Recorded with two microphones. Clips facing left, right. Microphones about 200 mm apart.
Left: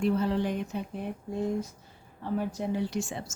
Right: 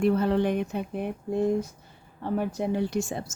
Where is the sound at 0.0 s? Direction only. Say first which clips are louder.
Right 4 dB; 60° right (ahead or behind).